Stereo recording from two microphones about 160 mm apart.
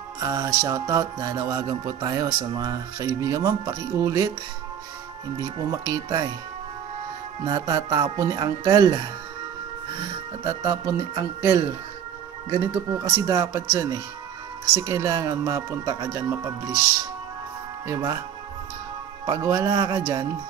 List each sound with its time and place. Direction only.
0.2 s music: 20° right (ahead or behind)
5.4 s music: 25° right (ahead or behind)
7.4 s music: 25° right (ahead or behind)
13.3 s music: 20° right (ahead or behind)
17.8 s music: 20° right (ahead or behind)
19.2 s music: 20° right (ahead or behind)